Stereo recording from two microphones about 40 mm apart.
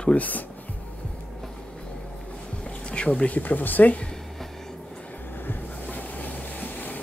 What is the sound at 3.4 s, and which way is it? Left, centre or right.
Speech, left.